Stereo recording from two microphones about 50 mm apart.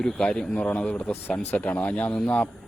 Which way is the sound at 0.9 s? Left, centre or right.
Left.